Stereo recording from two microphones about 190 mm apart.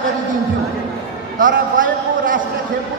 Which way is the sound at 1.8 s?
45° right (ahead or behind).